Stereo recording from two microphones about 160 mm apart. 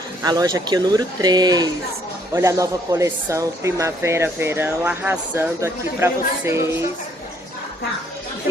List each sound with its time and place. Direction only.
0.2 s speech: 25° right (ahead or behind)